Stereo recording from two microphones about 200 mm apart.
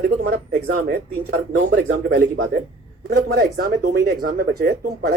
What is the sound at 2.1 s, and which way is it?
Speech, 45° right (ahead or behind).